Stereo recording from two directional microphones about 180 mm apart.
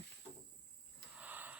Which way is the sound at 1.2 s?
10° right (ahead or behind).